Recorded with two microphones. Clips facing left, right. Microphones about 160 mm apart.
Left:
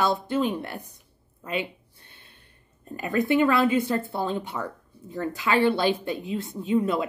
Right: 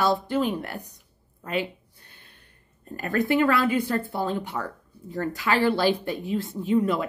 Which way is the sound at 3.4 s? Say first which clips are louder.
Left 2 dB; 20° left (ahead or behind).